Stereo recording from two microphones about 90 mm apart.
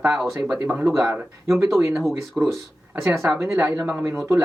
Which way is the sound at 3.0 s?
30° right (ahead or behind).